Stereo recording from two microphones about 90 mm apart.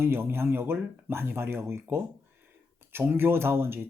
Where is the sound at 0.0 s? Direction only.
25° right (ahead or behind).